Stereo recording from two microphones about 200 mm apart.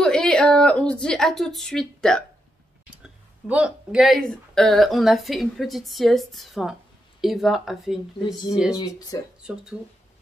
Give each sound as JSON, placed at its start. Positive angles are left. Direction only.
{"t": 0.0, "sound": "a woman's voice", "side_deg": 5}
{"t": 8.7, "sound": "speech", "side_deg": 20}